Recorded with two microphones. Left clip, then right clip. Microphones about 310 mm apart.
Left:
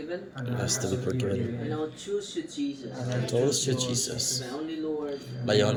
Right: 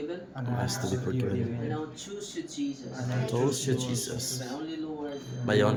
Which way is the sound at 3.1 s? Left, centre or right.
Centre.